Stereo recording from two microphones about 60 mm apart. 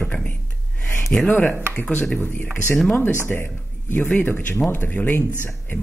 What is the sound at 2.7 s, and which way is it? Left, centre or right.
Speech, centre.